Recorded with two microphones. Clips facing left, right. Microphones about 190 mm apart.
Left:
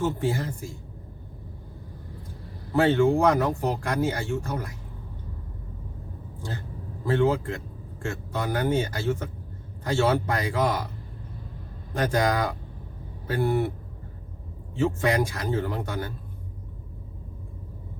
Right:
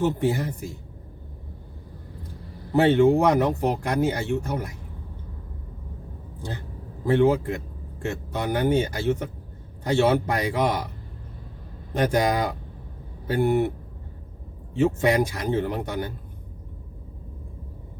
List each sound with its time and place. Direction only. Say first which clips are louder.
0.0 s speech: right 3 dB; 20° right (ahead or behind)
2.7 s speech: right 3 dB; 20° right (ahead or behind)
7.0 s speech: right 3 dB; 20° right (ahead or behind)
11.9 s speech: right 2 dB; 20° right (ahead or behind)
14.8 s speech: right 3 dB; 20° right (ahead or behind)